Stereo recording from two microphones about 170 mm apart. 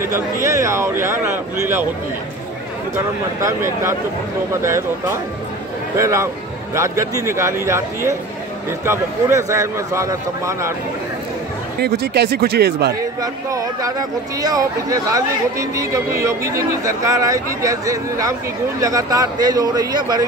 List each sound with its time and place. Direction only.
0.0 s speech: 15° right (ahead or behind)
3.3 s a man's voice: 15° right (ahead or behind)
11.8 s speech: 75° right (ahead or behind)
13.2 s speech: 20° right (ahead or behind)